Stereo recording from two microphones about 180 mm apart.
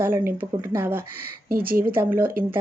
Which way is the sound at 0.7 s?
10° right (ahead or behind).